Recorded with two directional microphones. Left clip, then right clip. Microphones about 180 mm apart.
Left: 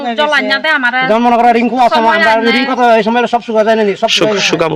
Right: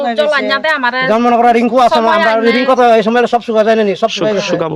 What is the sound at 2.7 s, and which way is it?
Speech, 15° right (ahead or behind).